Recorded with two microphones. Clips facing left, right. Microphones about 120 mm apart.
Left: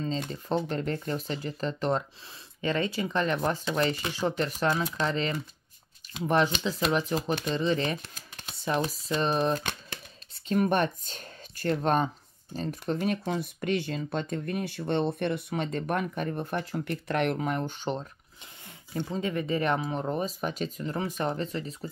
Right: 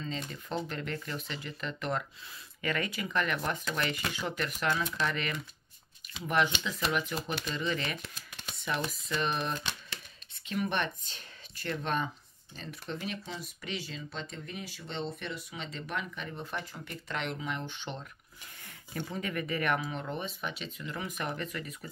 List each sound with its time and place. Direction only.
0.3 s speech: 30° left (ahead or behind)
9.6 s speech: 50° left (ahead or behind)
18.9 s speech: 25° left (ahead or behind)